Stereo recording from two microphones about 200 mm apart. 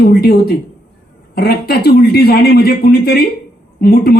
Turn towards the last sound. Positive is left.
turn(degrees=50)  # may be behind; listen again after turning